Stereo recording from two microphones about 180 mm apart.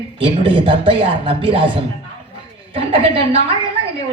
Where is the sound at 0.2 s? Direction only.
30° right (ahead or behind).